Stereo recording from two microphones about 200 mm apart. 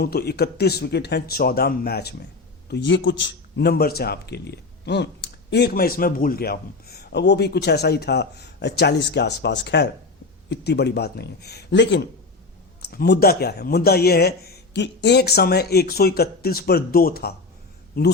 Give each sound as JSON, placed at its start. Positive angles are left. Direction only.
{"t": 0.0, "sound": "a man's voice", "side_deg": 50}